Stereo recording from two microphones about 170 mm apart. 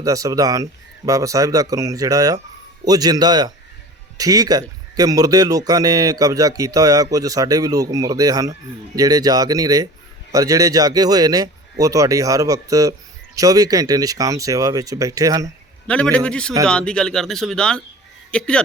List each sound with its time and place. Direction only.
0.0 s a man's voice: 20° right (ahead or behind)
16.1 s speech: 5° left (ahead or behind)